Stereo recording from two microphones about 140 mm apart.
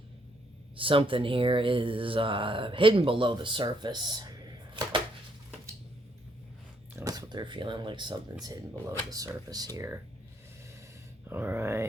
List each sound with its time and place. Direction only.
0.8 s speech: 40° right (ahead or behind)
4.7 s chopping: 35° right (ahead or behind)
6.9 s speech: 25° right (ahead or behind)
11.3 s a sound: 15° right (ahead or behind)